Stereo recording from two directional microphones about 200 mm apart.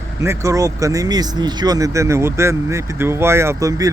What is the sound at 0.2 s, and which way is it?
Speech, 15° right (ahead or behind).